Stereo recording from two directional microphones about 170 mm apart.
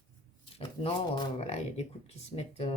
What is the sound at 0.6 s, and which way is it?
Speech, 30° left (ahead or behind).